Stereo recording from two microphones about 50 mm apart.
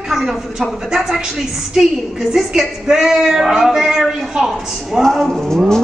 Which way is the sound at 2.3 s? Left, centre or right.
Centre.